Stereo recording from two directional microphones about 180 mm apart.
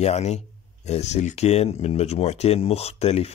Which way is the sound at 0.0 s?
35° left (ahead or behind).